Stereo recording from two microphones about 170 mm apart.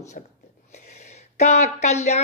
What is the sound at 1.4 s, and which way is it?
Speech, 40° left (ahead or behind).